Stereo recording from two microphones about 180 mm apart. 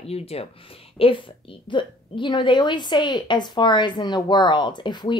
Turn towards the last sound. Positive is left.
turn(degrees=25)  # may be behind; listen again after turning